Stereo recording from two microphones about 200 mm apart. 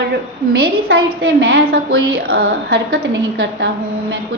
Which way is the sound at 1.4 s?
50° right (ahead or behind).